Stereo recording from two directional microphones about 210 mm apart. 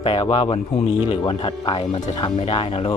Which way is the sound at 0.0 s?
25° left (ahead or behind).